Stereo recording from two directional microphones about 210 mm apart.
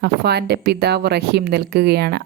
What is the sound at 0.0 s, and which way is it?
A woman's voice, 50° right (ahead or behind).